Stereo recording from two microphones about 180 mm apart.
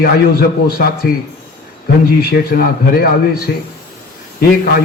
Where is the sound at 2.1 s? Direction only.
60° left (ahead or behind).